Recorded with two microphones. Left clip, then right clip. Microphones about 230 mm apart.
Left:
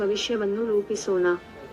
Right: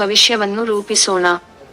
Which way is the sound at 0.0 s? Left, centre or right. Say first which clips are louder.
Right 12 dB; right.